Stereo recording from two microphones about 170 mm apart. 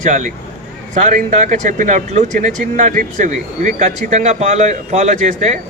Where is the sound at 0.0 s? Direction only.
45° right (ahead or behind).